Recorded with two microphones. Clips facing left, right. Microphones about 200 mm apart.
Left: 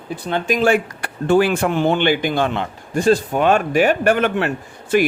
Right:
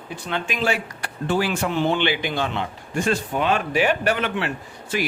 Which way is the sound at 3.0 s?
35° left (ahead or behind).